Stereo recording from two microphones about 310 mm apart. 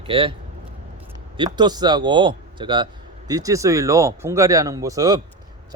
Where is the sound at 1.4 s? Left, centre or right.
Centre.